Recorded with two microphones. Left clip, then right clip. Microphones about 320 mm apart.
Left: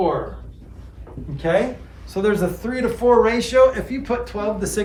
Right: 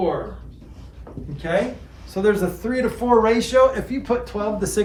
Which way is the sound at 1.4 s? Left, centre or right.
Centre.